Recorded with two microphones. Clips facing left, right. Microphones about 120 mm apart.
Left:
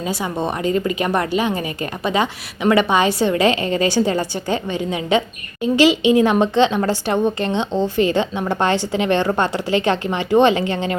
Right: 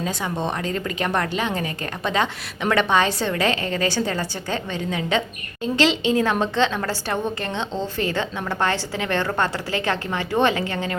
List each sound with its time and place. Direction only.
0.0 s a woman's voice: 10° left (ahead or behind)
2.6 s a woman's voice: 10° left (ahead or behind)